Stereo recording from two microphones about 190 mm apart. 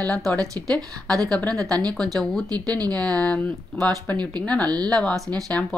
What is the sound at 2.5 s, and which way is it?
Speech, 20° right (ahead or behind).